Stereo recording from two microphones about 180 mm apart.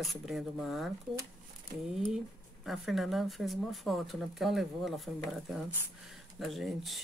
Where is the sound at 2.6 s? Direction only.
Centre (ahead or behind).